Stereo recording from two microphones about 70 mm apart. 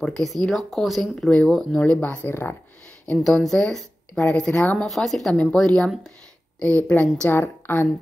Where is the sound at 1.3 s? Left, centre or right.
Centre.